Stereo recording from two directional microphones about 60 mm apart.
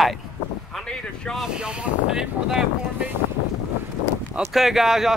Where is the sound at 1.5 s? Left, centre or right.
Centre.